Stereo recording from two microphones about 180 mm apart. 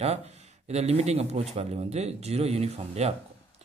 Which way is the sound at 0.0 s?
35° right (ahead or behind).